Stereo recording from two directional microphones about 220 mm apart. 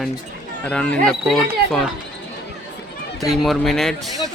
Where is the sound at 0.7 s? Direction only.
5° left (ahead or behind).